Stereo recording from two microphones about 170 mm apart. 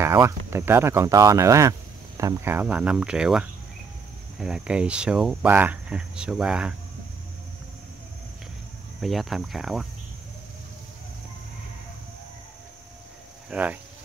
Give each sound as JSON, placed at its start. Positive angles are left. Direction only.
{"t": 0.0, "sound": "speech", "side_deg": -15}
{"t": 9.0, "sound": "speech", "side_deg": 0}
{"t": 13.5, "sound": "speech", "side_deg": -10}